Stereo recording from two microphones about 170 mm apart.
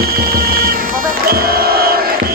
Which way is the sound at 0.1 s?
65° right (ahead or behind).